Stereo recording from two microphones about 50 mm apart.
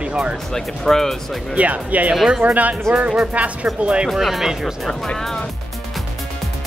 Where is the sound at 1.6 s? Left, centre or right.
Right.